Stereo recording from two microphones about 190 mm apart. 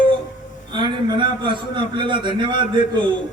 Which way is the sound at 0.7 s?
25° right (ahead or behind).